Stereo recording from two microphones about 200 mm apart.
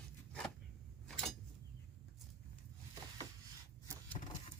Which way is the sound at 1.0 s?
5° left (ahead or behind).